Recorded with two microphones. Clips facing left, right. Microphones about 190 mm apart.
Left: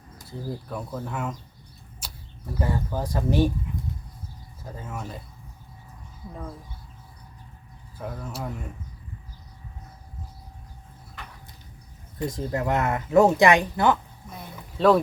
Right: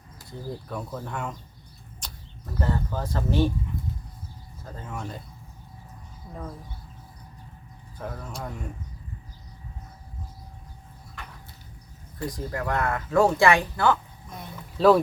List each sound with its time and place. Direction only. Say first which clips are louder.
0.3 s speech: left 2 dB; centre (ahead or behind)
2.0 s a sound: even; 5° left (ahead or behind)
2.6 s speech: left 1 dB; 10° left (ahead or behind)
4.6 s speech: even; 5° left (ahead or behind)
7.9 s speech: left 1 dB; 5° left (ahead or behind)
12.2 s speech: left 3 dB; 25° left (ahead or behind)
14.3 s a sound: even; centre (ahead or behind)